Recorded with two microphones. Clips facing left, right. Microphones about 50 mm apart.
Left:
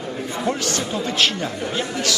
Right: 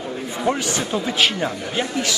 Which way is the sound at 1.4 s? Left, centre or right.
Right.